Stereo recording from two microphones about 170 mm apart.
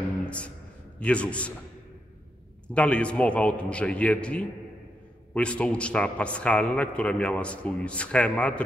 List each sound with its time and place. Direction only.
0.9 s a man's voice: 5° left (ahead or behind)
2.7 s a man's voice: 5° left (ahead or behind)